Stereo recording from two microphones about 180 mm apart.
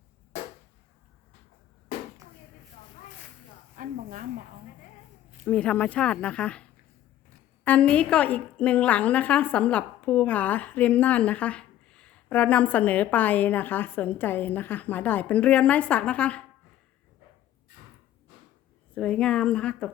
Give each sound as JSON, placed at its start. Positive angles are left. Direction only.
{"t": 3.8, "sound": "a sound", "side_deg": -50}
{"t": 5.5, "sound": "a woman's voice", "side_deg": 5}
{"t": 18.9, "sound": "speech", "side_deg": 5}